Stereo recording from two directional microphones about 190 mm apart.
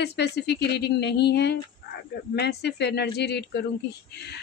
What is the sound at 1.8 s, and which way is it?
Dog, 50° left (ahead or behind).